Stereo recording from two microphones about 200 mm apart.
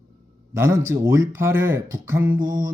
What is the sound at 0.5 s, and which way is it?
Speech, 15° right (ahead or behind).